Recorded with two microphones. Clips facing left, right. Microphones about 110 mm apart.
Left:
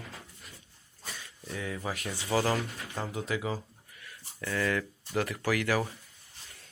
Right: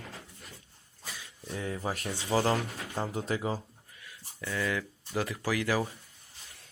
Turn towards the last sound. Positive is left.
turn(degrees=-20)  # may be behind; listen again after turning